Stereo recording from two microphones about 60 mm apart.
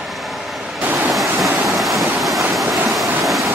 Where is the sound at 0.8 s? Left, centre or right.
Right.